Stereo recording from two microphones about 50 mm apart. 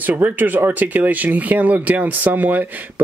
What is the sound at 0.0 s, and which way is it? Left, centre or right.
Speech, right.